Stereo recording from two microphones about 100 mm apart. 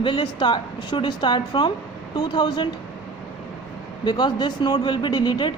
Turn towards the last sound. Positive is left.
turn(degrees=50)  # may be behind; listen again after turning